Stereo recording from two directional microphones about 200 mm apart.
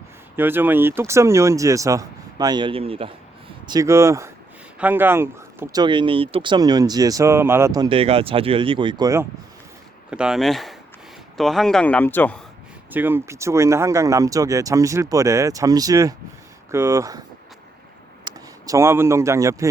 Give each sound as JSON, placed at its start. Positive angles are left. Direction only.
{"t": 0.3, "sound": "speech", "side_deg": -10}
{"t": 3.7, "sound": "speech", "side_deg": -15}
{"t": 10.1, "sound": "speech", "side_deg": -5}
{"t": 12.9, "sound": "speech", "side_deg": -10}
{"t": 18.3, "sound": "speech", "side_deg": -15}